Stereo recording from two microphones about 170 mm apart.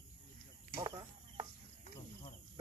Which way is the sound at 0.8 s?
20° right (ahead or behind).